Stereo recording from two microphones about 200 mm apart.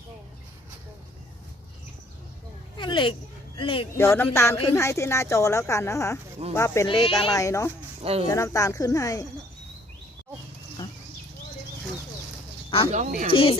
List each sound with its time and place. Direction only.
2.7 s speech: 25° left (ahead or behind)
3.9 s speech: 10° left (ahead or behind)
8.0 s speech: 30° right (ahead or behind)
8.3 s speech: 15° left (ahead or behind)
12.9 s speech: 40° right (ahead or behind)
13.2 s speech: 30° left (ahead or behind)